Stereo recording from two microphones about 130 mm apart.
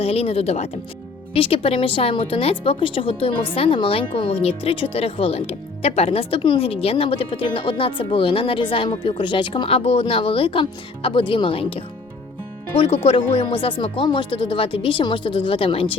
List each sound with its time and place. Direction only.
0.0 s speech: 50° left (ahead or behind)
12.8 s speech: 45° left (ahead or behind)